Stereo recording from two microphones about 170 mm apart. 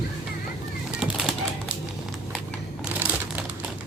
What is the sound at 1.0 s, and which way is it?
Bird, 5° right (ahead or behind).